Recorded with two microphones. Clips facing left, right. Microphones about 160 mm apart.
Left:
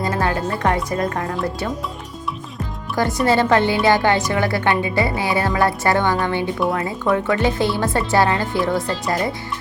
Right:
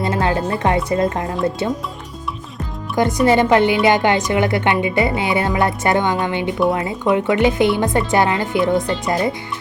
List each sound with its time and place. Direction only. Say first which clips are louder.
0.0 s a woman's voice: right 2 dB; 20° right (ahead or behind)
2.9 s a woman's voice: right 3 dB; 20° right (ahead or behind)